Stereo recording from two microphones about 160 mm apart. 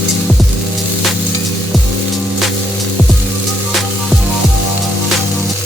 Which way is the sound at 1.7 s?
Centre (ahead or behind).